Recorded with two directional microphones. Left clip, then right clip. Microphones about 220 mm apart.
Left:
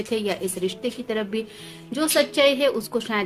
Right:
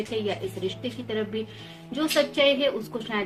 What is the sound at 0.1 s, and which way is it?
A woman's voice, 55° left (ahead or behind).